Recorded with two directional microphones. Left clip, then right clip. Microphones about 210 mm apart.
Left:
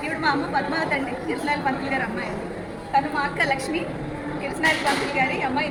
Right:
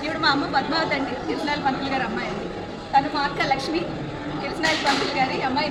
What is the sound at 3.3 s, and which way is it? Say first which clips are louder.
Speech: left 1 dB; 15° left (ahead or behind).